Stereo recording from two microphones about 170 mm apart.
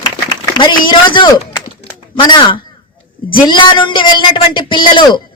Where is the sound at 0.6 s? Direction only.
25° left (ahead or behind).